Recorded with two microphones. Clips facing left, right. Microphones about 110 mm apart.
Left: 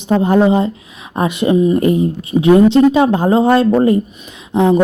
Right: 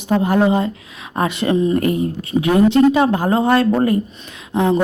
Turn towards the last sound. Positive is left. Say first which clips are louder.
# left 4 dB
turn(degrees=15)  # may be behind; listen again after turning